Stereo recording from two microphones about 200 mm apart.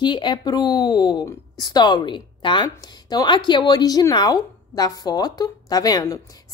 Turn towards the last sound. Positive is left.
turn(degrees=15)  # may be behind; listen again after turning